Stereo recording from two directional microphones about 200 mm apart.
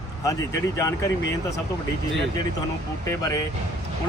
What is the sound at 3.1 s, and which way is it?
Speech, 15° left (ahead or behind).